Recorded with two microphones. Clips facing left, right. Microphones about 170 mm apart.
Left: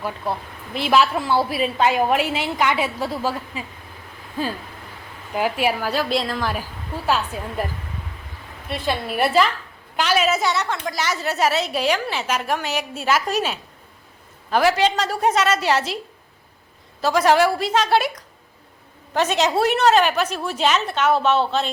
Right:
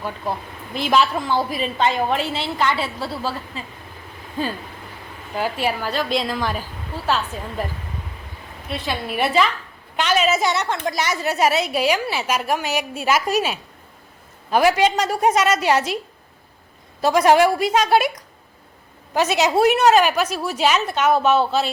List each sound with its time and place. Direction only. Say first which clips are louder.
0.0 s a woman's voice: even; 5° left (ahead or behind)
5.3 s a woman's voice: left 2 dB; 10° left (ahead or behind)
8.7 s a woman's voice: left 1 dB; centre (ahead or behind)
10.0 s a sound: right 1 dB; 5° left (ahead or behind)
10.3 s a woman's voice: right 1 dB; 20° right (ahead or behind)
17.0 s a woman's voice: right 2 dB; 15° right (ahead or behind)
19.1 s a woman's voice: right 1 dB; 10° right (ahead or behind)